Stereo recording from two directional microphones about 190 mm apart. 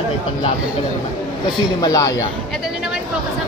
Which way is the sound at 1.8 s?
15° left (ahead or behind).